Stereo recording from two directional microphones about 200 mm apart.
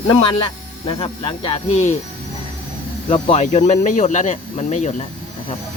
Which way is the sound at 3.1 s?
30° left (ahead or behind).